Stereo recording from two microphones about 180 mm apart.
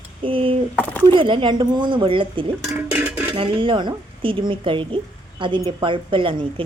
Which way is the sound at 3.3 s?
30° right (ahead or behind).